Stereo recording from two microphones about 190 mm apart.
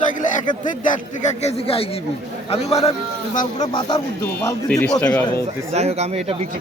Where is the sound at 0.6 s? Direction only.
40° left (ahead or behind).